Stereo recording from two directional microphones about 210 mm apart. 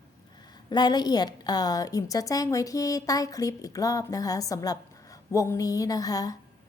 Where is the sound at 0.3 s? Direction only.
20° left (ahead or behind).